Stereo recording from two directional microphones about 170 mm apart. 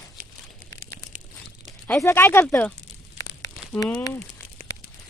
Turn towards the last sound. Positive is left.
turn(degrees=15)  # may be behind; listen again after turning